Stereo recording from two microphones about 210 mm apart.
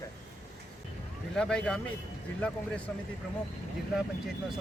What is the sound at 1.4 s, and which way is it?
Speech, 5° left (ahead or behind).